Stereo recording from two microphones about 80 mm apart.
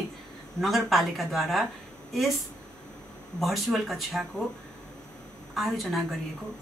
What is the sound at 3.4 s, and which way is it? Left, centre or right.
Speech, centre.